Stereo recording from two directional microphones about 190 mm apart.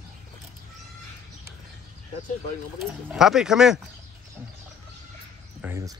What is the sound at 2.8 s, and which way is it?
Speech, centre (ahead or behind).